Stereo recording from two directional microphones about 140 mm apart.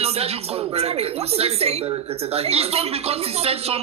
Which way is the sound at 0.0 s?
45° right (ahead or behind).